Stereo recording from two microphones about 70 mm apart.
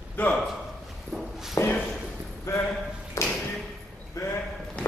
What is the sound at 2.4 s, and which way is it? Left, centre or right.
Speech, left.